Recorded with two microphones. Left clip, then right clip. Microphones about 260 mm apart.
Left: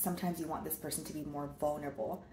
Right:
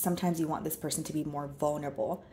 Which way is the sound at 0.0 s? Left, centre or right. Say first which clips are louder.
Right 7 dB; right.